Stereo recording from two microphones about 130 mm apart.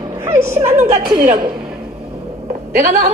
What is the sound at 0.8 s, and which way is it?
Speech, 50° right (ahead or behind).